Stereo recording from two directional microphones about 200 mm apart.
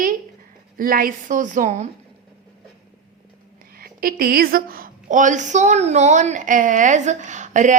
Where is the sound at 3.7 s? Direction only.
45° right (ahead or behind).